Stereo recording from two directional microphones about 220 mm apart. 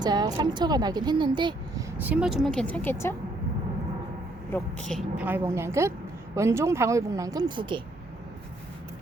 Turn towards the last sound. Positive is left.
turn(degrees=-20)  # may be behind; listen again after turning